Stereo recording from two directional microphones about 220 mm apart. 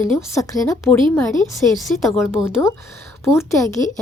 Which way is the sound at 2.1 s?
10° left (ahead or behind).